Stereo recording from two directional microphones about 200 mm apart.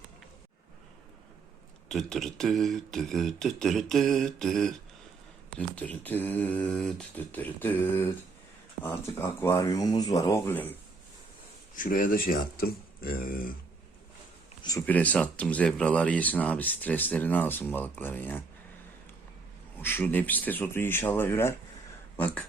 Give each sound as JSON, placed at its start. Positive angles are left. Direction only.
{"t": 1.9, "sound": "speech", "side_deg": 0}
{"t": 11.8, "sound": "speech", "side_deg": 45}
{"t": 14.6, "sound": "speech", "side_deg": 15}
{"t": 19.8, "sound": "speech", "side_deg": 10}